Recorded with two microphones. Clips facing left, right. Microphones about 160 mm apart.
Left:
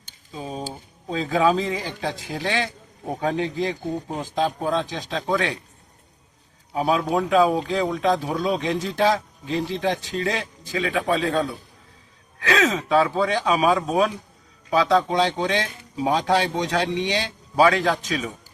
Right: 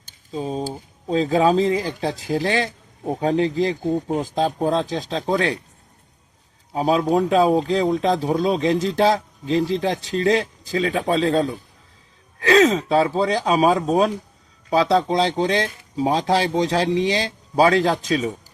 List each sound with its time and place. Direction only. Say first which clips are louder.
0.3 s speech: right 6 dB; 35° right (ahead or behind)
6.7 s a man's voice: right 3 dB; 35° right (ahead or behind)
12.5 s speech: right 5 dB; 35° right (ahead or behind)